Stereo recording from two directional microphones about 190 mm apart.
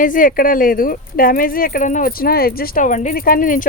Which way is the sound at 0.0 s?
45° left (ahead or behind).